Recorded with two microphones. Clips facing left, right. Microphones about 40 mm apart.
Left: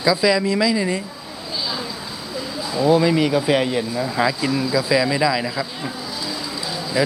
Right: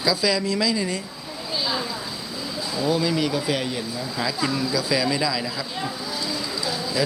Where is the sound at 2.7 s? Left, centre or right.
Left.